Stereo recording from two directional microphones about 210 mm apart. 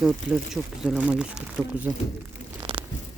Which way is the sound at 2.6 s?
25° right (ahead or behind).